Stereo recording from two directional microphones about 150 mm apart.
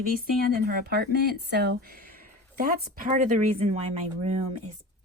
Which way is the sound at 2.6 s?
70° right (ahead or behind).